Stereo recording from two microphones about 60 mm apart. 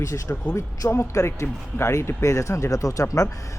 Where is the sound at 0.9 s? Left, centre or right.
Left.